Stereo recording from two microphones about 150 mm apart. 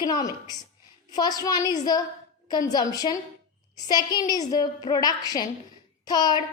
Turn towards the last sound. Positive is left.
turn(degrees=30)  # may be behind; listen again after turning